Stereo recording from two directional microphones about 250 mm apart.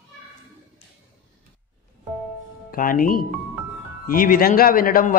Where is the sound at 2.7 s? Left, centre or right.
Left.